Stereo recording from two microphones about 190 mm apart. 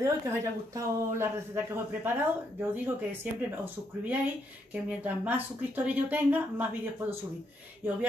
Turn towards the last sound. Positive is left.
turn(degrees=-10)  # may be behind; listen again after turning